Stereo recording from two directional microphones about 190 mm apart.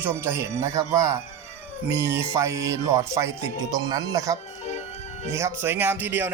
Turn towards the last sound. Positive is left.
turn(degrees=-10)  # may be behind; listen again after turning